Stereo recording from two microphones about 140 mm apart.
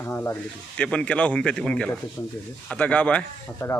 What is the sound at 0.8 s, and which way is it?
Speech, 10° left (ahead or behind).